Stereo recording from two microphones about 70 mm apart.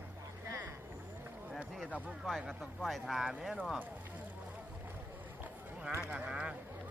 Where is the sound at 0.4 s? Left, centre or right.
Right.